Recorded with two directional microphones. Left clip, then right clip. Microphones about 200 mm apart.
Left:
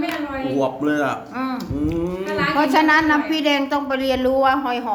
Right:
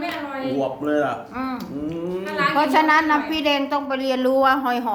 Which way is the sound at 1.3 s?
5° left (ahead or behind).